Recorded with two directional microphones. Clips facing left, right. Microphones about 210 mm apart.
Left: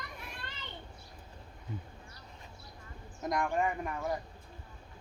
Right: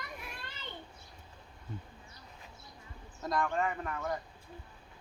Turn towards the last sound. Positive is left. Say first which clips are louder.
# left 2 dB
turn(degrees=15)  # may be behind; listen again after turning